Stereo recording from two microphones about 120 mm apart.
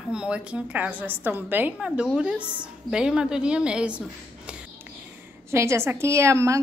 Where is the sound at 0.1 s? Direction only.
10° right (ahead or behind).